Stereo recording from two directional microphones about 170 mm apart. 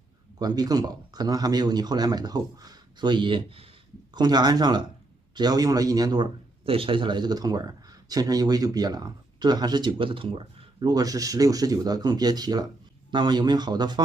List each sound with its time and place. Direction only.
0.4 s a man's voice: 25° right (ahead or behind)